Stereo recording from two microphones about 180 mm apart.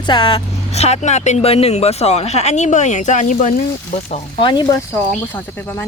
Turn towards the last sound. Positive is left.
turn(degrees=10)  # may be behind; listen again after turning